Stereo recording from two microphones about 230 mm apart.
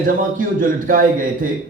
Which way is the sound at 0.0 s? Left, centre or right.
Right.